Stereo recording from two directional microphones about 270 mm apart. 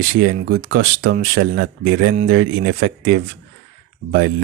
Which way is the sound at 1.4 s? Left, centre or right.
Right.